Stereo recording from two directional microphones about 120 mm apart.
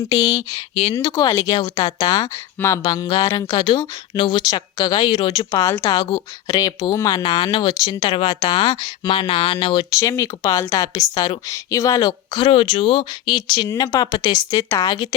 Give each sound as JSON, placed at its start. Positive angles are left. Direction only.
{"t": 0.1, "sound": "speech", "side_deg": 30}
{"t": 9.9, "sound": "speech", "side_deg": 25}
{"t": 12.5, "sound": "speech", "side_deg": 45}